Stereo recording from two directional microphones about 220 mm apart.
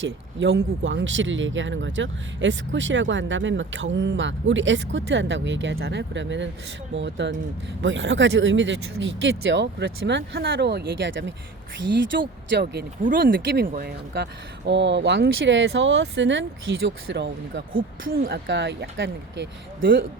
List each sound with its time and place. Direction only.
0.0 s speech: 55° right (ahead or behind)
18.1 s speech: 45° right (ahead or behind)